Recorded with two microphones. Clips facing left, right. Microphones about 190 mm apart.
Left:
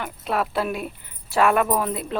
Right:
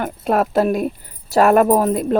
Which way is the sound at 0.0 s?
45° right (ahead or behind).